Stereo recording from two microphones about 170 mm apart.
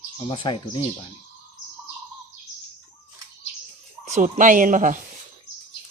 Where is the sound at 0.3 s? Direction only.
30° left (ahead or behind).